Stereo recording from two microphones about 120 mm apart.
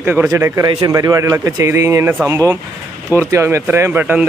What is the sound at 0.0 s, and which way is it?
Speech, 15° right (ahead or behind).